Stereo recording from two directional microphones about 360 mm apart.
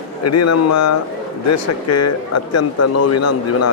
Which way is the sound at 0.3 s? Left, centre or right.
Left.